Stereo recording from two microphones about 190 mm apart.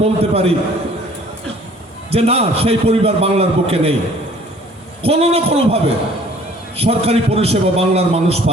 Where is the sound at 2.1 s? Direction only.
30° right (ahead or behind).